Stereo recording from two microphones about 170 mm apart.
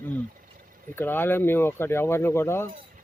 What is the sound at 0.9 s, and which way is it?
Speech, 10° left (ahead or behind).